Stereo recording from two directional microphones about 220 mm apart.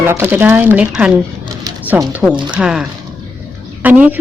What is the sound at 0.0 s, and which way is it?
A woman's voice, 10° right (ahead or behind).